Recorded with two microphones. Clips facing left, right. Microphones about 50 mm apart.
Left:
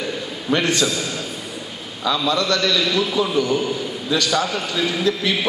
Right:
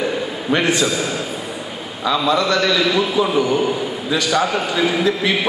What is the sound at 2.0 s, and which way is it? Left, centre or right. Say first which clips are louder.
A man's voice: right 3 dB; right.